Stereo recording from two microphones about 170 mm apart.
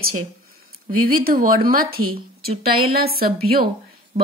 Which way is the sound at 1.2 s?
55° right (ahead or behind).